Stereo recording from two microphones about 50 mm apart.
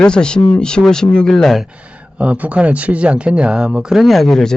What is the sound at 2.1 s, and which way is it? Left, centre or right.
Speech, right.